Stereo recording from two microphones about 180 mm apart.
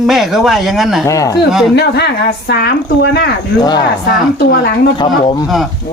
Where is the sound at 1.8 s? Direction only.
70° left (ahead or behind).